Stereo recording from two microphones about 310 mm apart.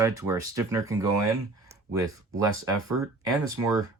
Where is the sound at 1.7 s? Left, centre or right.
Centre.